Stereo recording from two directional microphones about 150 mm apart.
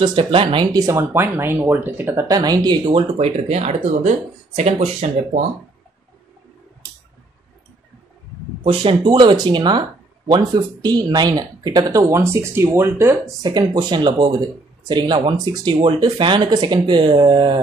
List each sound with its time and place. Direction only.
0.0 s speech: 35° right (ahead or behind)
2.9 s speech: 45° right (ahead or behind)
8.6 s speech: 30° right (ahead or behind)